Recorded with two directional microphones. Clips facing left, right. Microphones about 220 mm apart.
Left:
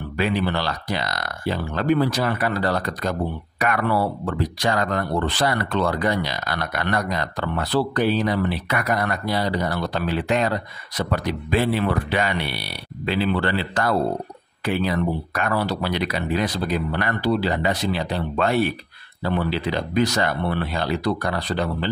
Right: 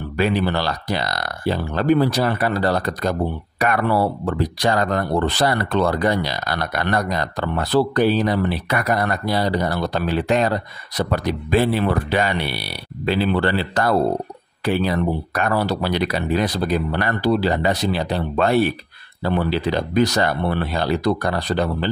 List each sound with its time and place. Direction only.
0.2 s speech: 40° right (ahead or behind)